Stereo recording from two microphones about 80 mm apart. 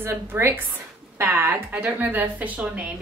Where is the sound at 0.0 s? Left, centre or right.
Right.